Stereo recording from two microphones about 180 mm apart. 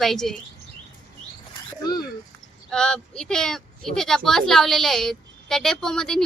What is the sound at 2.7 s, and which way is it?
Speech, 5° left (ahead or behind).